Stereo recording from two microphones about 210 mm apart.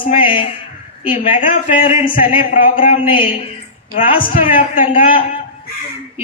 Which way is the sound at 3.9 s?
40° left (ahead or behind).